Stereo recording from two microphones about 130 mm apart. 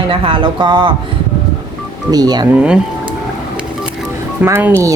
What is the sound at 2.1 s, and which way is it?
Speech, 30° right (ahead or behind).